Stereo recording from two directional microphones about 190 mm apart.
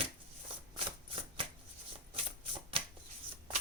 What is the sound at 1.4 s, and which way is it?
Shuffling cards, 25° right (ahead or behind).